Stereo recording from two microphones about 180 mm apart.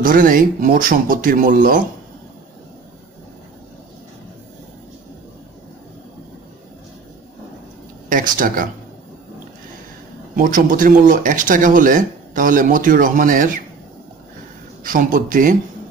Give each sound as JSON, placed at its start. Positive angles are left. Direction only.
{"t": 0.0, "sound": "speech", "side_deg": -50}
{"t": 8.1, "sound": "speech", "side_deg": -50}
{"t": 10.3, "sound": "speech", "side_deg": -50}
{"t": 14.8, "sound": "speech", "side_deg": -45}